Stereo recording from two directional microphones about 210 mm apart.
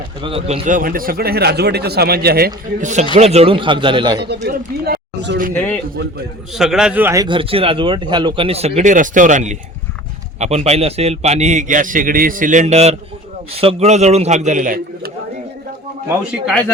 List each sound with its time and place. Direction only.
0.2 s speech: 25° right (ahead or behind)
4.4 s speech: 50° right (ahead or behind)
5.5 s a man's voice: 10° left (ahead or behind); by 15.1 s 40° right (ahead or behind)
16.0 s speech: 5° right (ahead or behind)